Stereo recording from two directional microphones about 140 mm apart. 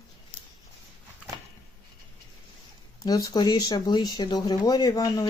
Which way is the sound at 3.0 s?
25° left (ahead or behind).